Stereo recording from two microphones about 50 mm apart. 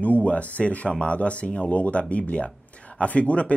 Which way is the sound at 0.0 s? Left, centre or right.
Left.